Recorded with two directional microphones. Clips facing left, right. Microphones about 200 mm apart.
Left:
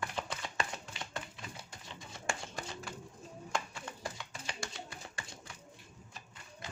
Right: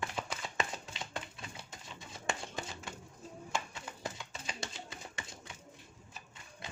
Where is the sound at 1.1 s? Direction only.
25° right (ahead or behind).